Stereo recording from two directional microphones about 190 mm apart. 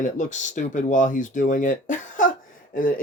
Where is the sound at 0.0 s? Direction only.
40° left (ahead or behind).